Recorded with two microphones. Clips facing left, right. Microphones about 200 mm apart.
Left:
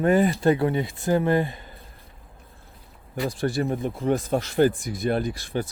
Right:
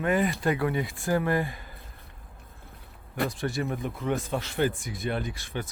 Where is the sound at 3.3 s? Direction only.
35° left (ahead or behind).